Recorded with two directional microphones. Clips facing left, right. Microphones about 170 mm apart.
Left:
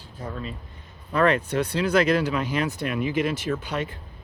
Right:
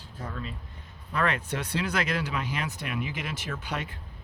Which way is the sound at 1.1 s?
35° left (ahead or behind).